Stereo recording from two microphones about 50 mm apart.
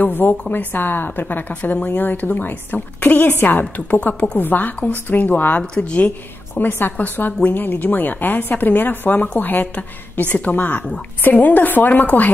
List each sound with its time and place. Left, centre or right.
0.0 s a woman's voice: left
1.5 s a woman's voice: left
4.4 s a woman's voice: left
5.6 s a woman's voice: centre
5.9 s a woman's voice: left